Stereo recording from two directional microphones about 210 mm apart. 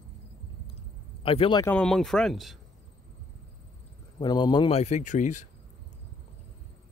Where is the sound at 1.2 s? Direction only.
25° left (ahead or behind).